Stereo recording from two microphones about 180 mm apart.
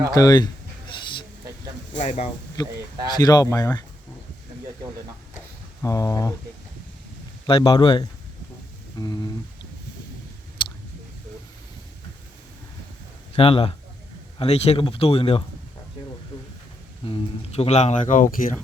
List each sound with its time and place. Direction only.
0.1 s speech: 20° left (ahead or behind)
2.0 s speech: 40° left (ahead or behind)
3.2 s speech: 20° left (ahead or behind)
5.8 s speech: 20° left (ahead or behind)
7.4 s speech: 25° left (ahead or behind)
13.3 s speech: 30° left (ahead or behind)
17.1 s speech: 35° left (ahead or behind); by 18.5 s 50° left (ahead or behind)